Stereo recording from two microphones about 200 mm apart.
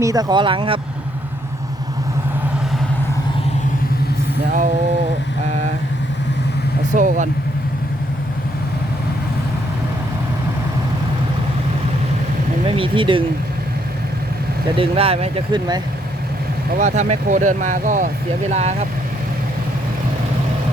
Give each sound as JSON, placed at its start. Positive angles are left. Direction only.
{"t": 0.0, "sound": "speech", "side_deg": -20}
{"t": 6.9, "sound": "speech", "side_deg": -40}
{"t": 12.6, "sound": "speech", "side_deg": -25}
{"t": 14.8, "sound": "speech", "side_deg": -30}
{"t": 16.7, "sound": "speech", "side_deg": -35}